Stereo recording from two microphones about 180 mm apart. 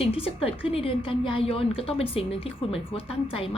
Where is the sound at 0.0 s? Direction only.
30° left (ahead or behind).